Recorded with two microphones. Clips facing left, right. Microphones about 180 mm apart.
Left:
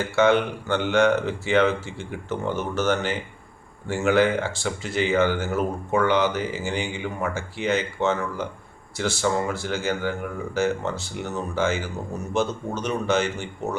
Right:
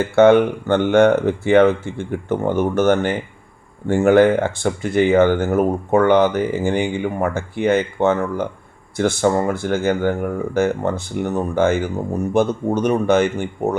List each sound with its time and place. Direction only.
0.2 s speech: 55° right (ahead or behind)